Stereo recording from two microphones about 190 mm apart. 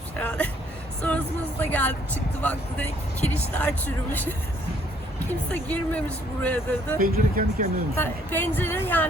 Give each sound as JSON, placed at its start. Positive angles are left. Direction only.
{"t": 0.2, "sound": "vehicle", "side_deg": 10}
{"t": 1.0, "sound": "speech", "side_deg": 10}
{"t": 7.0, "sound": "speech", "side_deg": -50}
{"t": 7.9, "sound": "speech", "side_deg": 10}